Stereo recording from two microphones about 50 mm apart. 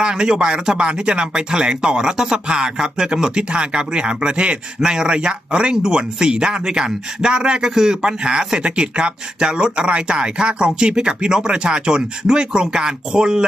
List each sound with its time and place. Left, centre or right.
0.0 s speech: centre